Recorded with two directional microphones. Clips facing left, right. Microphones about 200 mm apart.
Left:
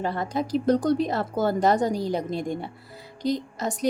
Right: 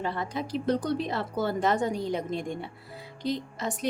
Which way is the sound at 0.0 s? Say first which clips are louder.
Left 4 dB; 40° left (ahead or behind).